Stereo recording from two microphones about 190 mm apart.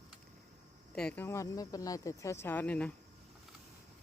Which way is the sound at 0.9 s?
5° left (ahead or behind).